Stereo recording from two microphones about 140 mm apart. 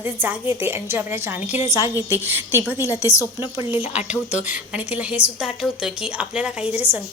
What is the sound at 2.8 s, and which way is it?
Speech, 20° left (ahead or behind).